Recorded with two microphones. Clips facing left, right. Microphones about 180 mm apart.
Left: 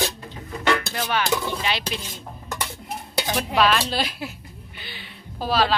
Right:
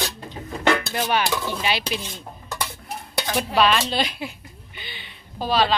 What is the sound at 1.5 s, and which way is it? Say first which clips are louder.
Speech: right 2 dB; 5° right (ahead or behind).